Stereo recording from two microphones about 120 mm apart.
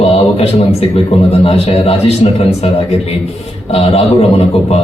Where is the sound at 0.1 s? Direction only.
55° left (ahead or behind).